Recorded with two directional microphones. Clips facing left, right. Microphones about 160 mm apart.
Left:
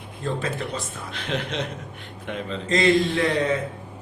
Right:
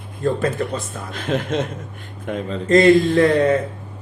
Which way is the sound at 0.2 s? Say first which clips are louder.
Right 7 dB; 50° right (ahead or behind).